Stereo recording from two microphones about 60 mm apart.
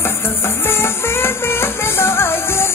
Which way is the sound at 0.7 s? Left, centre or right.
Left.